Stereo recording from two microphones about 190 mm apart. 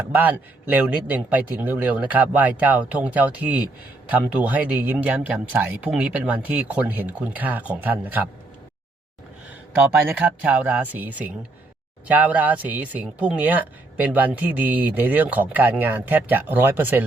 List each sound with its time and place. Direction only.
0.0 s speech: 10° right (ahead or behind)
9.7 s speech: 5° right (ahead or behind)